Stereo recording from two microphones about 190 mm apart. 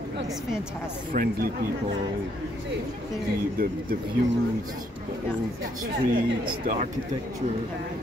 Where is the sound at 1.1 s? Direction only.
50° right (ahead or behind).